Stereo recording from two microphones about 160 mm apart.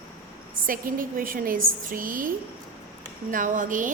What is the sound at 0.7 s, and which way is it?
A woman's voice, 60° right (ahead or behind).